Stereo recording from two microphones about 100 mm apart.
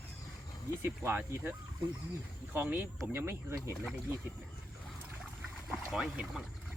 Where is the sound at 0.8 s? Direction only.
20° right (ahead or behind).